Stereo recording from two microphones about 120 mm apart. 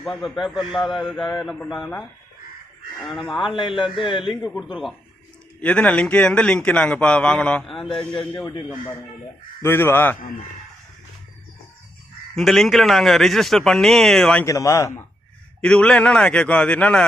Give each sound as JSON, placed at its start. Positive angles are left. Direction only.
{"t": 0.0, "sound": "a man's voice", "side_deg": 0}
{"t": 3.0, "sound": "a man's voice", "side_deg": 0}
{"t": 3.5, "sound": "a man's voice", "side_deg": 45}
{"t": 4.2, "sound": "a man's voice", "side_deg": -5}
{"t": 5.5, "sound": "a man's voice", "side_deg": 10}
{"t": 8.4, "sound": "speech", "side_deg": 40}
{"t": 9.6, "sound": "a man's voice", "side_deg": 20}
{"t": 12.4, "sound": "a man's voice", "side_deg": 0}
{"t": 14.4, "sound": "speech", "side_deg": 25}
{"t": 15.6, "sound": "a man's voice", "side_deg": 10}